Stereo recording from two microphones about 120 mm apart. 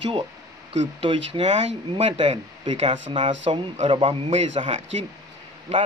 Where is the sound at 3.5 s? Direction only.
50° right (ahead or behind).